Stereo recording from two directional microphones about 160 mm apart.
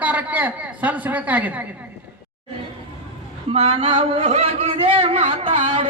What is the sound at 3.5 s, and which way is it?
A man's voice, 35° right (ahead or behind).